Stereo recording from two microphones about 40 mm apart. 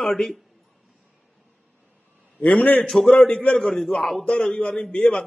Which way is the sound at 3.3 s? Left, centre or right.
Left.